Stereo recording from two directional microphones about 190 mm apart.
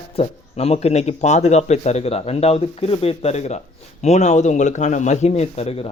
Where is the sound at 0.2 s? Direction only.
35° left (ahead or behind).